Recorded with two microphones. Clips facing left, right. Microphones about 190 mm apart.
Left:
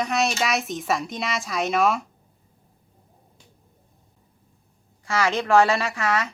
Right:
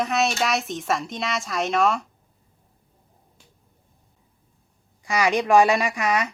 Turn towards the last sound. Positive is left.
turn(degrees=-15)  # may be behind; listen again after turning